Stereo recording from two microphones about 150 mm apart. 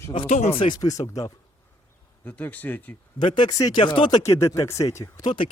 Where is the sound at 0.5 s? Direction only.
35° left (ahead or behind).